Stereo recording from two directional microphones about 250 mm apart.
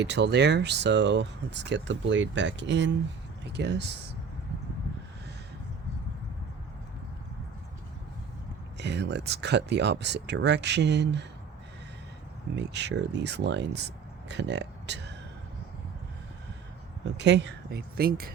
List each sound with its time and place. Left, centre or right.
0.0 s speech: right
8.8 s speech: right
12.5 s speech: right
17.2 s speech: right